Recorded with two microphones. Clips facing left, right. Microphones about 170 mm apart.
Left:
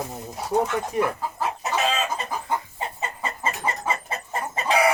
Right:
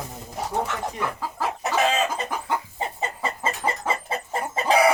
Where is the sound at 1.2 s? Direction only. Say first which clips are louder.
Even; 90° right.